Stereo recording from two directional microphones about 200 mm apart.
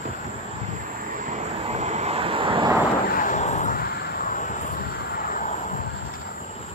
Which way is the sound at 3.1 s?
40° left (ahead or behind).